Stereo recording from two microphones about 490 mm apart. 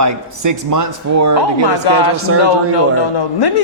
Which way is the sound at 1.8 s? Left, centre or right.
Left.